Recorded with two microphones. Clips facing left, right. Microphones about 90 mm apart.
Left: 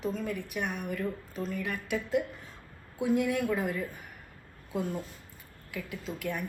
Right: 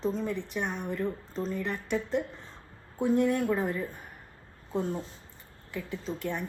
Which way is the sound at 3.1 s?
35° right (ahead or behind).